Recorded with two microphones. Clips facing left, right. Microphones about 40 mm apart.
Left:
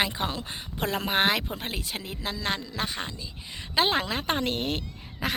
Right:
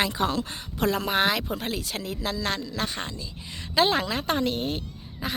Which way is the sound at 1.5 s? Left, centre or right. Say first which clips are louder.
Right 3 dB; left.